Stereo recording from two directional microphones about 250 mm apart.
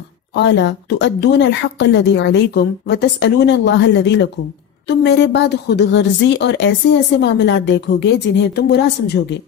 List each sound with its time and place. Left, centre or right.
0.3 s speech: left